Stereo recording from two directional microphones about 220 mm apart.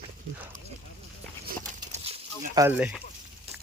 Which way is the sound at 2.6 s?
10° right (ahead or behind).